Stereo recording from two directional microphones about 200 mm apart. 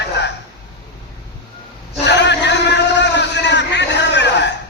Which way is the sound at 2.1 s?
60° left (ahead or behind).